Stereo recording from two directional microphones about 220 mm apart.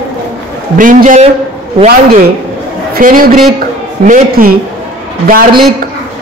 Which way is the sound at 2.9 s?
40° right (ahead or behind).